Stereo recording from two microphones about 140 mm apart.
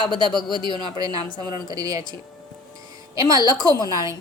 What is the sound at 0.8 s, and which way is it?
A woman's voice, 30° right (ahead or behind).